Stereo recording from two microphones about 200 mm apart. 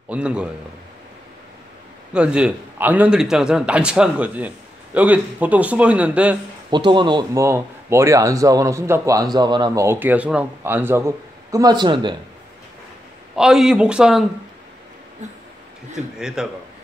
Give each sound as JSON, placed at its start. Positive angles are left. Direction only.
{"t": 0.1, "sound": "a man's voice", "side_deg": -5}
{"t": 2.1, "sound": "a man's voice", "side_deg": -5}
{"t": 6.7, "sound": "speech", "side_deg": -20}
{"t": 13.4, "sound": "a man's voice", "side_deg": -5}
{"t": 16.2, "sound": "a man's voice", "side_deg": -5}